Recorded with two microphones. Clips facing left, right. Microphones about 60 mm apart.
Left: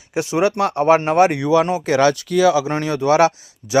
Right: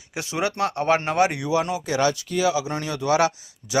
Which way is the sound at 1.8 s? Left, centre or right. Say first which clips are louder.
Left 7 dB; left.